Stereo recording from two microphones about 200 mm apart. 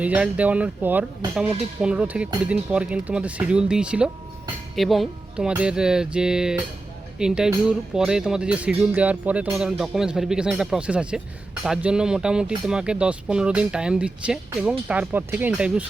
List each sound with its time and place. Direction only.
0.0 s speech: 5° right (ahead or behind)